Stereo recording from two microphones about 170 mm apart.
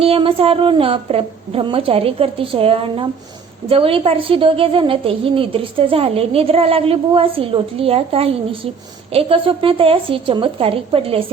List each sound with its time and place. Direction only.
0.0 s a woman's voice: 35° right (ahead or behind)